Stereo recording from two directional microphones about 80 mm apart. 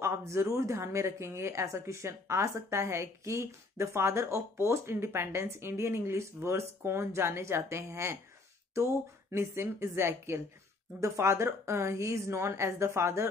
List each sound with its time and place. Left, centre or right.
0.0 s a woman's voice: right